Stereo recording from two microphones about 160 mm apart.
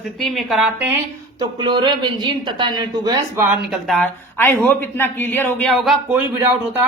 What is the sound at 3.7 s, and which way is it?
Speech, centre (ahead or behind).